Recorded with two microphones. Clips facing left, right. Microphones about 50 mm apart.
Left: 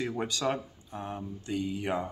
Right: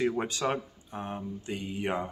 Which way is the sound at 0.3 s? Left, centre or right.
Right.